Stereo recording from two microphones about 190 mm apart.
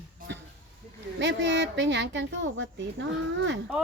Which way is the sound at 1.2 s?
70° right (ahead or behind).